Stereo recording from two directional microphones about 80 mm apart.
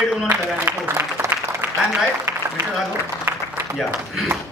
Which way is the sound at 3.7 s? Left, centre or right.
Centre.